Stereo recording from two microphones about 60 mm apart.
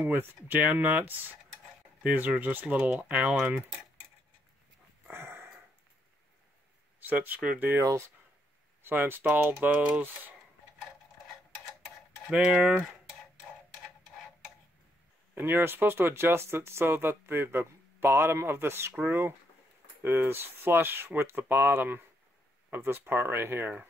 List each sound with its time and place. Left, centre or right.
0.0 s speech: right
0.6 s speech: right
5.1 s a sound: right
7.0 s speech: right
8.8 s speech: right
12.3 s speech: centre
15.3 s speech: right